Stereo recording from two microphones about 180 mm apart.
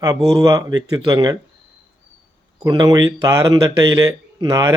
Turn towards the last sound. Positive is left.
turn(degrees=-20)  # may be behind; listen again after turning